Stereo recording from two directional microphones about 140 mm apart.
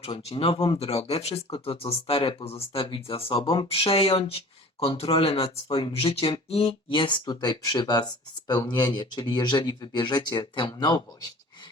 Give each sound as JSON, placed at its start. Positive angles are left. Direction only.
{"t": 0.0, "sound": "speech", "side_deg": 45}